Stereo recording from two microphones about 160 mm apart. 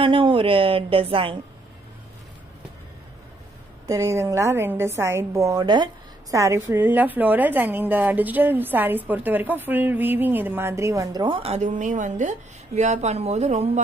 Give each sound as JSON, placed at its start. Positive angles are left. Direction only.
{"t": 0.0, "sound": "a woman's voice", "side_deg": -35}
{"t": 3.8, "sound": "a woman's voice", "side_deg": -20}
{"t": 11.2, "sound": "a woman's voice", "side_deg": -35}